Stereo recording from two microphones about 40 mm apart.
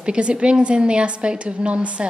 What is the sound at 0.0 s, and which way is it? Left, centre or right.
A woman's voice, right.